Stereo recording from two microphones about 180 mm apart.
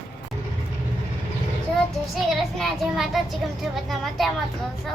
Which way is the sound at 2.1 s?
Centre (ahead or behind).